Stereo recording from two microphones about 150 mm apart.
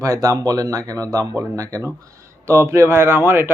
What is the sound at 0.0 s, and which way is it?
Speech, 20° right (ahead or behind).